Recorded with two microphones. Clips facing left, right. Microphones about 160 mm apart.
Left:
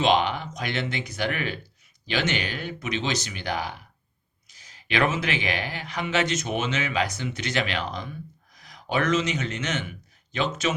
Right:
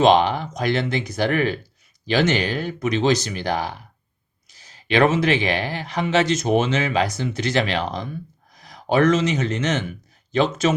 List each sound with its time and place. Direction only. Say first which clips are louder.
0.0 s speech: right 6 dB; 40° right (ahead or behind)